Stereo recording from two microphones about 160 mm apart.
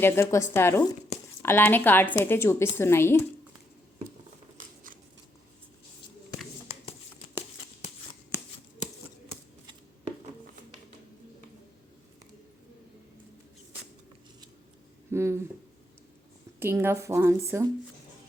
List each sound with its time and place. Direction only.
0.0 s a woman's voice: 15° left (ahead or behind)
15.1 s a sound: 15° right (ahead or behind)
16.6 s a woman's voice: 15° right (ahead or behind)